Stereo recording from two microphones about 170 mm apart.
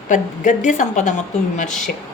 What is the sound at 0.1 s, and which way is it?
Speech, 50° left (ahead or behind).